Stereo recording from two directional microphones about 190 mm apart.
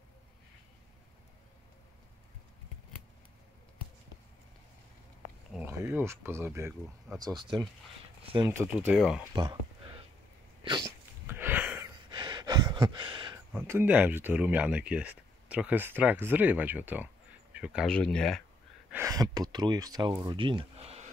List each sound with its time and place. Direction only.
5.5 s speech: 10° right (ahead or behind); by 8.5 s 30° right (ahead or behind)
8.5 s speech: 10° right (ahead or behind)
9.3 s speech: 20° right (ahead or behind)
10.6 s dog: 25° right (ahead or behind)
11.2 s a sound: 10° right (ahead or behind)
12.1 s gasp: 20° right (ahead or behind)
13.6 s speech: 10° right (ahead or behind)
18.9 s speech: 15° right (ahead or behind)
20.3 s a sound: 25° right (ahead or behind)